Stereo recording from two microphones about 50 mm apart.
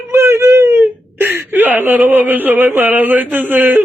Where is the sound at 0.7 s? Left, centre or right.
Right.